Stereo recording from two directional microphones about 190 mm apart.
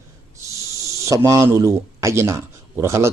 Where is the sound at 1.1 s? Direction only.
15° right (ahead or behind).